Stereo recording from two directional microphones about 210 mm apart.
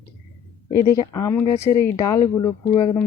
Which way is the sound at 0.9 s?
15° left (ahead or behind).